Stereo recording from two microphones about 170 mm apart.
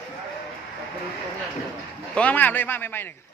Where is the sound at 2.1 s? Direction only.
10° left (ahead or behind).